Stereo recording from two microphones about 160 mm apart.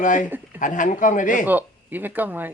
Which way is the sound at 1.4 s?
10° right (ahead or behind).